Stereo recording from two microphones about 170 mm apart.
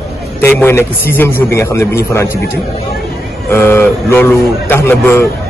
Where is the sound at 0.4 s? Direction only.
15° left (ahead or behind).